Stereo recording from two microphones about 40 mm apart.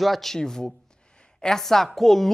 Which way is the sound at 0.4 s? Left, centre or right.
Centre.